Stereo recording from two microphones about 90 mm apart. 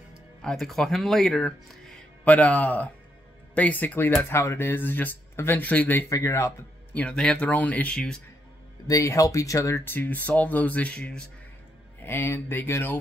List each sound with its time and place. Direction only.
0.4 s speech: 5° left (ahead or behind)
2.2 s speech: 15° left (ahead or behind)
6.0 s speech: 35° left (ahead or behind)
6.9 s speech: 15° left (ahead or behind)
8.8 s speech: 40° left (ahead or behind)
9.9 s speech: 20° left (ahead or behind)
12.0 s speech: 25° left (ahead or behind)